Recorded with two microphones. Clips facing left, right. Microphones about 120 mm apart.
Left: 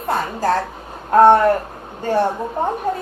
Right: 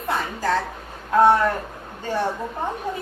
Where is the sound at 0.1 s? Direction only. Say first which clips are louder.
Left 4 dB; 45° left (ahead or behind).